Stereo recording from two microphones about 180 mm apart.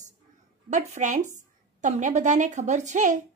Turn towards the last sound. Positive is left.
turn(degrees=-45)  # may be behind; listen again after turning